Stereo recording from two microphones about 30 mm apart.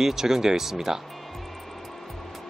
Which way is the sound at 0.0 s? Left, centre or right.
Centre.